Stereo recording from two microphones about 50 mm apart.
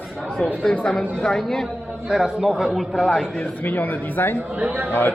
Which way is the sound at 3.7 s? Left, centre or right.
Left.